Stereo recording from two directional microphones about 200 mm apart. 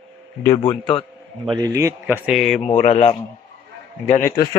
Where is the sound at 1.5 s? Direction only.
15° right (ahead or behind).